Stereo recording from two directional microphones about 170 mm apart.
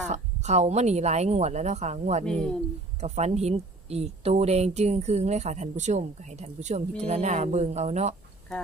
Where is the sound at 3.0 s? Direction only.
40° right (ahead or behind).